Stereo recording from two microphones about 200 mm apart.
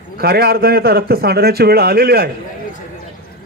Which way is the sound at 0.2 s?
50° right (ahead or behind).